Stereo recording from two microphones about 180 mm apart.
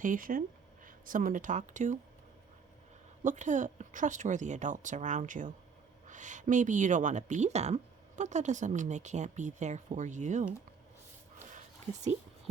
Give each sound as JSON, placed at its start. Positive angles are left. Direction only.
{"t": 0.0, "sound": "speech", "side_deg": -50}
{"t": 3.2, "sound": "speech", "side_deg": -45}